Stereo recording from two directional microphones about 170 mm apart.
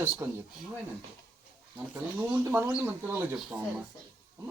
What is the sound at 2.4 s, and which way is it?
Speech, 15° right (ahead or behind).